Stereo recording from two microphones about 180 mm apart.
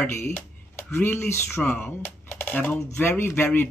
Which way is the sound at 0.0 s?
10° left (ahead or behind).